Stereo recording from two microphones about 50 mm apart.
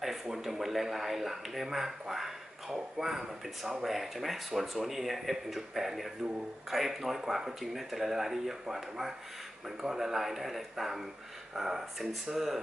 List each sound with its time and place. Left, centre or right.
0.0 s speech: centre